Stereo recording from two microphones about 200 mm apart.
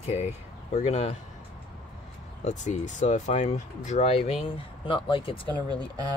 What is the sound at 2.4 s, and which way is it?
Speech, 35° left (ahead or behind).